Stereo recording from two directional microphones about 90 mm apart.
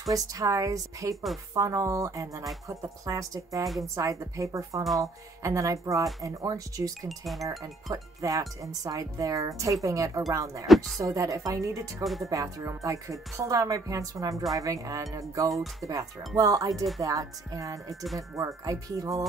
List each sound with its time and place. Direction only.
0.1 s speech: 40° right (ahead or behind)
4.8 s speech: centre (ahead or behind)
5.4 s speech: 35° right (ahead or behind)
7.1 s speech: centre (ahead or behind)
7.4 s speech: 40° right (ahead or behind)
12.0 s speech: centre (ahead or behind)
12.3 s speech: 40° right (ahead or behind)
14.3 s speech: centre (ahead or behind)
14.6 s speech: 40° right (ahead or behind)
15.5 s speech: centre (ahead or behind)
16.3 s speech: 40° right (ahead or behind)